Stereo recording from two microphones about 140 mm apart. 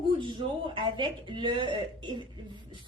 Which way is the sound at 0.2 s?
35° right (ahead or behind).